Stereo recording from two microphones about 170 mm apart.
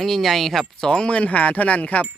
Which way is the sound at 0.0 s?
Centre (ahead or behind).